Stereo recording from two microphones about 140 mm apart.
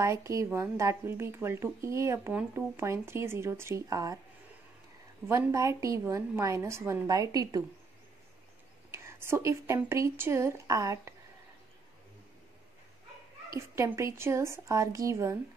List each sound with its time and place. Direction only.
0.0 s speech: 20° right (ahead or behind)
5.3 s speech: 20° right (ahead or behind)
8.9 s speech: 20° right (ahead or behind)
13.5 s speech: 20° right (ahead or behind)